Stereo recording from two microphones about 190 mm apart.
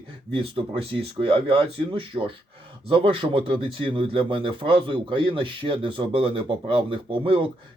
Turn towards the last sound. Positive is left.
turn(degrees=-25)  # may be behind; listen again after turning